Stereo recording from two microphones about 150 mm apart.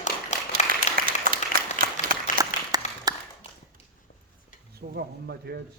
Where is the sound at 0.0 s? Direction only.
55° left (ahead or behind).